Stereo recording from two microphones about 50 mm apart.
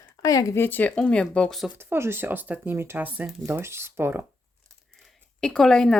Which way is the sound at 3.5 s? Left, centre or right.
Right.